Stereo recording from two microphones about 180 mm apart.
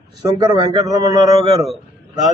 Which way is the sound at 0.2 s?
20° right (ahead or behind).